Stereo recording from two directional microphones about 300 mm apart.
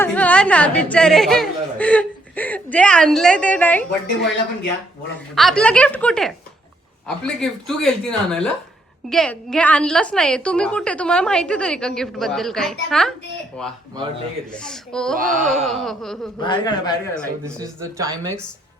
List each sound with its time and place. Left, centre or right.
0.0 s a woman's voice: centre
5.3 s a woman's voice: centre
14.5 s a woman's voice: centre
15.2 s a sound: right
15.6 s a woman's voice: centre
16.4 s a man's voice: centre
17.6 s speech: centre